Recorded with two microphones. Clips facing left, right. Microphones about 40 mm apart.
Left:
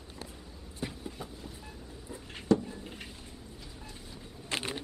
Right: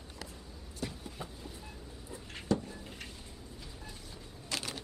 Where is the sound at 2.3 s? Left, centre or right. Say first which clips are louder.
Left 6 dB; centre.